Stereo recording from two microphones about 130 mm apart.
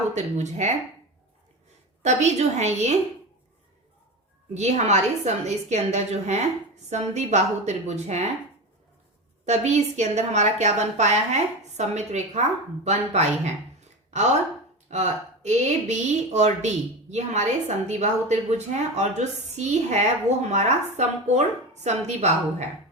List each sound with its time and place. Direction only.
0.1 s speech: 60° right (ahead or behind)
2.0 s speech: 60° right (ahead or behind)
4.5 s speech: 60° right (ahead or behind)
9.5 s speech: 60° right (ahead or behind)
14.8 s speech: 60° right (ahead or behind)